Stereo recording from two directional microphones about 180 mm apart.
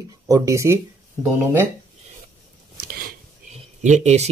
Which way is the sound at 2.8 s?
55° right (ahead or behind).